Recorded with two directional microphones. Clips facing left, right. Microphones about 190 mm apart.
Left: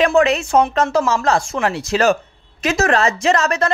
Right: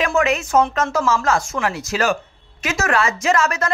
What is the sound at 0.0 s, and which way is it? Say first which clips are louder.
Speech: left 4 dB; 35° left (ahead or behind).